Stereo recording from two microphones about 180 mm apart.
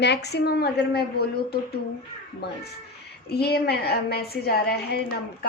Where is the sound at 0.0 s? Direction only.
65° left (ahead or behind).